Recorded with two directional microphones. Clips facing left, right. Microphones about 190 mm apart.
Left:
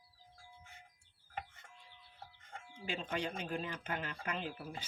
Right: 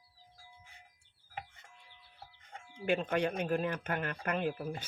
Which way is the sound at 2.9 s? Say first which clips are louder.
Right 8 dB; 55° right (ahead or behind).